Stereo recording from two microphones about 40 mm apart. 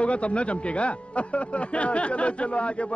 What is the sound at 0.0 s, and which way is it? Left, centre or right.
Speech, left.